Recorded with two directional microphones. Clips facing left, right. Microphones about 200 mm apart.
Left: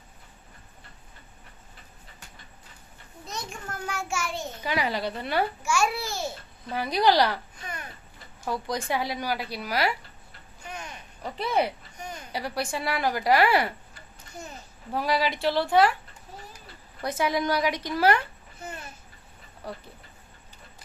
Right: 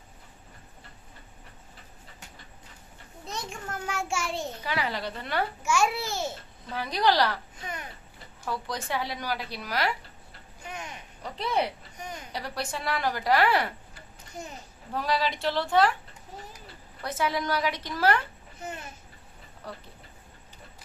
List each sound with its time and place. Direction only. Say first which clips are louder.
3.3 s a sound: right 1 dB; 25° right (ahead or behind)
4.6 s a woman's voice: left 5 dB; 15° left (ahead or behind)
5.6 s a child's voice: even; 20° right (ahead or behind)
6.7 s a woman's voice: left 3 dB; 10° left (ahead or behind)
7.6 s a sound: right 1 dB; 20° right (ahead or behind)
8.5 s a woman's voice: left 3 dB; 15° left (ahead or behind)
10.7 s a sound: even; 20° right (ahead or behind)
11.3 s a woman's voice: left 2 dB; 5° left (ahead or behind)
14.9 s a woman's voice: left 2 dB; 10° left (ahead or behind)
17.0 s a woman's voice: left 3 dB; 15° left (ahead or behind)
19.6 s a woman's voice: left 3 dB; 10° left (ahead or behind)